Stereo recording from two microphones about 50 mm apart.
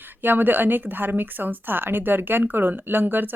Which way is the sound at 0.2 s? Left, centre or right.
Right.